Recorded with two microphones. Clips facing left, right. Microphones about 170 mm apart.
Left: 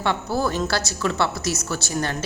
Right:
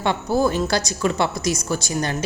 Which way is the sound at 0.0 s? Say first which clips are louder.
Right 3 dB; 15° right (ahead or behind).